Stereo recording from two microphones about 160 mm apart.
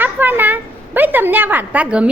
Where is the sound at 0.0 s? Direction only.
10° right (ahead or behind).